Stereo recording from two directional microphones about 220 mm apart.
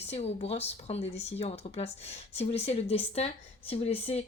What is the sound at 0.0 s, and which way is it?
Speech, 30° left (ahead or behind).